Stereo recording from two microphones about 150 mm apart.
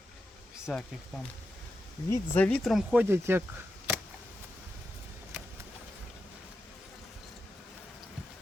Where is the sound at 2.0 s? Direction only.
10° left (ahead or behind).